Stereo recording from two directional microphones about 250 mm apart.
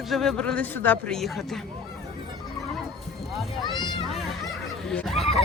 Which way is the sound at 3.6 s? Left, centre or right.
Centre.